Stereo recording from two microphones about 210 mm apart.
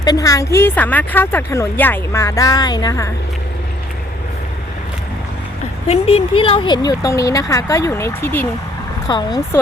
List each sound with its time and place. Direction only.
0.0 s speech: 15° left (ahead or behind)
5.9 s speech: 30° left (ahead or behind)